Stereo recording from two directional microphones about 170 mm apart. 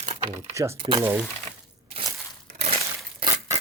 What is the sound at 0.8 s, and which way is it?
Speech, 30° right (ahead or behind).